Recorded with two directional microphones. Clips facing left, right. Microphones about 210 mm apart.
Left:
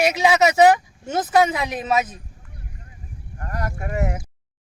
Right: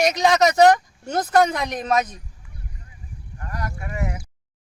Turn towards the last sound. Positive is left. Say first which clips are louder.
# left 4 dB
turn(degrees=50)  # may be behind; listen again after turning